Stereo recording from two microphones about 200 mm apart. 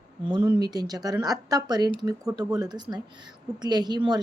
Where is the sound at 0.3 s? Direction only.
20° right (ahead or behind).